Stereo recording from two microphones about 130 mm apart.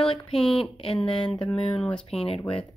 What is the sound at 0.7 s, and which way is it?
Speech, 5° left (ahead or behind).